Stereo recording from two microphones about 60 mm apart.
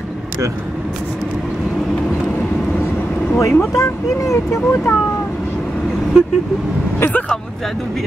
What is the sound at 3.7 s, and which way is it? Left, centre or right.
Speech, left.